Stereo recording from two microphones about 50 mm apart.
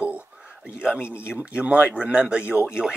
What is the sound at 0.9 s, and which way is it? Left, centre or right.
Speech, left.